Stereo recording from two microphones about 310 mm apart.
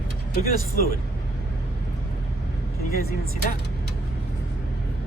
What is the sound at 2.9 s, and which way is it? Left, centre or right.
Speech, left.